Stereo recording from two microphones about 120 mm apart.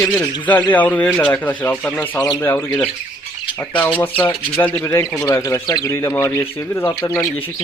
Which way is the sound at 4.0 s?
15° left (ahead or behind).